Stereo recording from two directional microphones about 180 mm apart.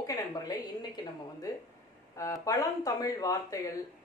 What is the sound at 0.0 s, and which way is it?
A man's voice, 20° left (ahead or behind).